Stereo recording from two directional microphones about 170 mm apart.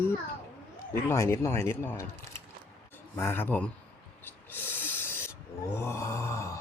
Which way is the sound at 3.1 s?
15° left (ahead or behind).